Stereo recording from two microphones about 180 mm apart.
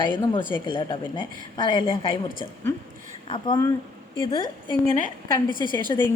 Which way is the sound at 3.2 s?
30° left (ahead or behind).